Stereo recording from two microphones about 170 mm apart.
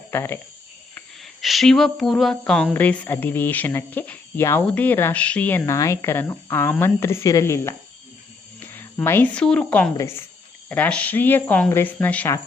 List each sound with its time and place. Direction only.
0.1 s speech: 15° left (ahead or behind)
1.2 s speech: centre (ahead or behind)